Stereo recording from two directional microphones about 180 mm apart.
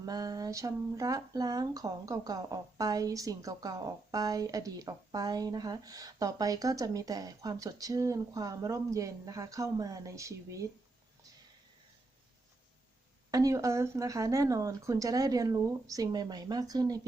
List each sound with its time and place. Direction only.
0.0 s speech: 20° right (ahead or behind)
13.3 s speech: 20° right (ahead or behind)